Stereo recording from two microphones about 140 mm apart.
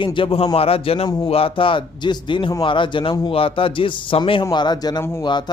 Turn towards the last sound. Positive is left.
turn(degrees=30)  # may be behind; listen again after turning